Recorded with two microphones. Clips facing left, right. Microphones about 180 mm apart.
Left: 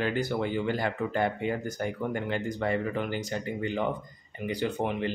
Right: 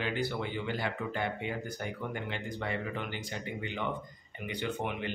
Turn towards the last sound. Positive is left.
turn(degrees=35)  # may be behind; listen again after turning